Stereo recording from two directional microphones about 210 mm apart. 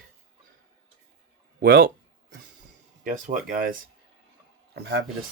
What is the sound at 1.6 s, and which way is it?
Speech, 45° right (ahead or behind).